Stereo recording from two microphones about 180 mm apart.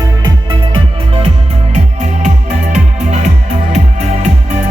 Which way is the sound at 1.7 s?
40° right (ahead or behind).